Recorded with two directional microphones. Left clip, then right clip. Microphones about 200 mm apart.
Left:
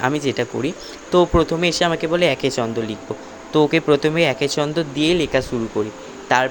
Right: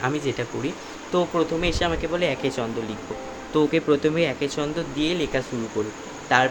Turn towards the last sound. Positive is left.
turn(degrees=40)  # may be behind; listen again after turning